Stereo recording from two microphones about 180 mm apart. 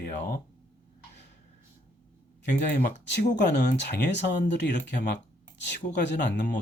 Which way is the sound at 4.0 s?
70° left (ahead or behind).